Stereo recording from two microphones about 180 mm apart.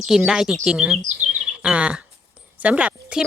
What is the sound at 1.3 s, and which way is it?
Chirp, 5° right (ahead or behind).